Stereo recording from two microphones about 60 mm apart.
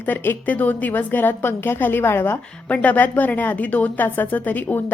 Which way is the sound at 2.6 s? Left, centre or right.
Left.